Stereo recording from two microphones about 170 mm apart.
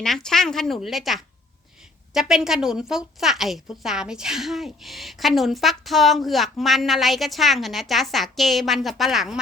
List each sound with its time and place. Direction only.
0.0 s a woman's voice: centre (ahead or behind)